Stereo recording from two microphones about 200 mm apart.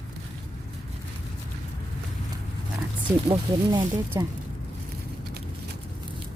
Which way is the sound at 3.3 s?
25° right (ahead or behind).